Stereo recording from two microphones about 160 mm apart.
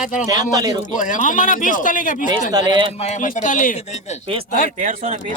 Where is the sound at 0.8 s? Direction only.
55° left (ahead or behind).